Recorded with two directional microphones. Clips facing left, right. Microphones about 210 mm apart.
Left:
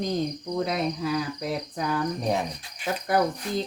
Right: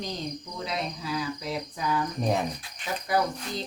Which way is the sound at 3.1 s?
55° left (ahead or behind).